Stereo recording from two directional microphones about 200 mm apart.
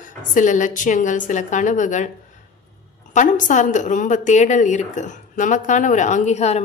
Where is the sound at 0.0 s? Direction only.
40° left (ahead or behind).